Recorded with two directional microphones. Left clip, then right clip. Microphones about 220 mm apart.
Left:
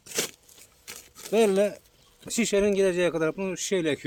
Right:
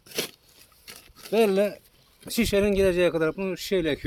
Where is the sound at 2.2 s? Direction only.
20° right (ahead or behind).